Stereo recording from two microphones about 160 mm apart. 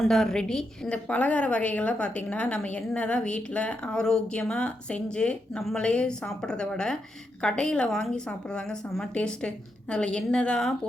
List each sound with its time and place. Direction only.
0.0 s a woman's voice: 5° left (ahead or behind)